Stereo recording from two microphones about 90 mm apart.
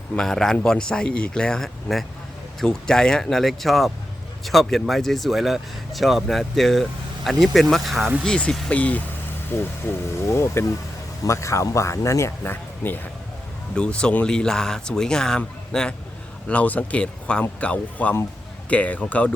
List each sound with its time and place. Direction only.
0.2 s speech: 5° left (ahead or behind)
9.5 s speech: 25° left (ahead or behind)
12.5 s speech: 20° left (ahead or behind)
13.7 s speech: 10° left (ahead or behind)